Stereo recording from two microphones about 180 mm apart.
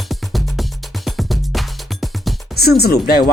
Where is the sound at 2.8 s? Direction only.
60° left (ahead or behind).